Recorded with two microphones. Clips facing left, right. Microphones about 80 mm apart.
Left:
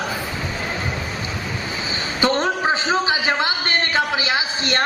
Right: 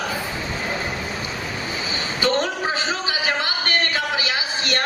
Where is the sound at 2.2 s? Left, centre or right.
Left.